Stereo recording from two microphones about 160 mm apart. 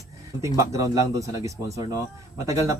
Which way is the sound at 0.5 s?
20° right (ahead or behind).